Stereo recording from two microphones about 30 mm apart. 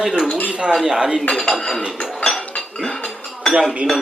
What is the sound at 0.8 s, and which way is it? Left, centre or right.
Speech, centre.